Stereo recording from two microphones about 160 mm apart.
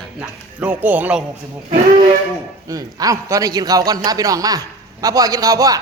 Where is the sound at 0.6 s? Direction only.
10° right (ahead or behind).